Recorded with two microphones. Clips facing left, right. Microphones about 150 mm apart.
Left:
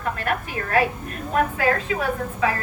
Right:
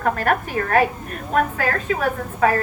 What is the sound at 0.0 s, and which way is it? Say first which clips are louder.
Speech: right 5 dB; 50° right (ahead or behind).